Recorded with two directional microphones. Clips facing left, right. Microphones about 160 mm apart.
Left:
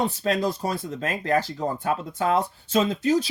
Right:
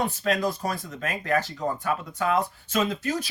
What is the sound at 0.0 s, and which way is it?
Speech, 30° left (ahead or behind).